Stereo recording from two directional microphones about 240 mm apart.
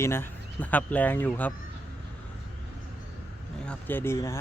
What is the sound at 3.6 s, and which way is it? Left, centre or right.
Speech, centre.